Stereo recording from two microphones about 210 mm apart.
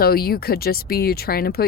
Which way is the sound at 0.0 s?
45° left (ahead or behind).